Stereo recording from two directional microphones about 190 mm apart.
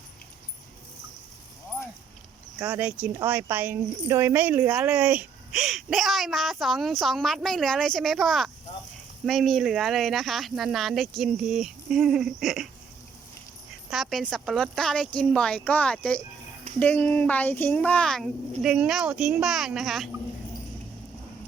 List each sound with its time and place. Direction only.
2.6 s speech: 10° right (ahead or behind)
13.9 s speech: centre (ahead or behind)